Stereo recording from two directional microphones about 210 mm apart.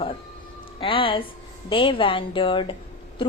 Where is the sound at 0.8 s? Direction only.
25° left (ahead or behind).